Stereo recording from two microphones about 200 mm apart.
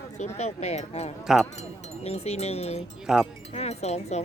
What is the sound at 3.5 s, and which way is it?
Speech, 30° left (ahead or behind).